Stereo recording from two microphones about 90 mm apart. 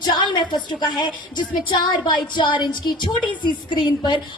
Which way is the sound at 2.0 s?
55° left (ahead or behind).